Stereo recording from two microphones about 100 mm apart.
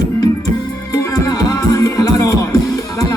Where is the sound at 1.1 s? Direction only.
40° left (ahead or behind).